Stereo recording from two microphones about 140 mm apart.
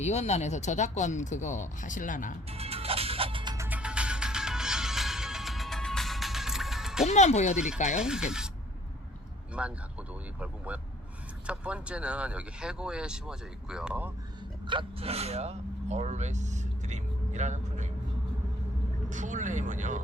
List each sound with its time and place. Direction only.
0.0 s speech: 55° left (ahead or behind); by 2.4 s 70° left (ahead or behind)
2.5 s music: 45° right (ahead or behind)
3.7 s music: 10° right (ahead or behind)
7.1 s speech: 55° left (ahead or behind)
7.9 s speech: 5° right (ahead or behind)
9.6 s speech: 10° right (ahead or behind)
14.7 s speech: 40° right (ahead or behind); by 17.8 s 60° right (ahead or behind)
19.1 s speech: 60° right (ahead or behind)